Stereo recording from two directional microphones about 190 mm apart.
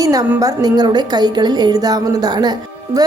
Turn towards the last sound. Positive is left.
turn(degrees=-20)  # may be behind; listen again after turning